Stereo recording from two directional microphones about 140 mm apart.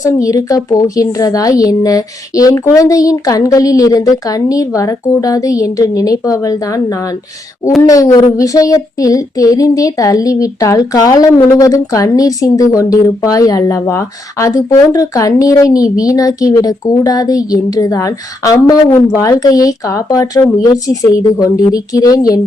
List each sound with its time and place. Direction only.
0.0 s a woman's voice: 25° left (ahead or behind)